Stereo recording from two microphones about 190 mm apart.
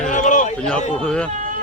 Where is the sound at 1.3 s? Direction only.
40° right (ahead or behind).